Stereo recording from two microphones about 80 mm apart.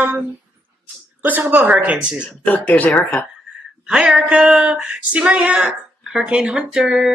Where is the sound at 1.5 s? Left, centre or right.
Right.